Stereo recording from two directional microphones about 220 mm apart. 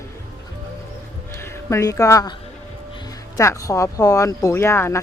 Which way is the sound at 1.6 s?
10° left (ahead or behind).